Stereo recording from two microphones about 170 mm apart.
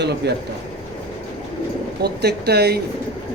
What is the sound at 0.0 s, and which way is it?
Speech, 80° right.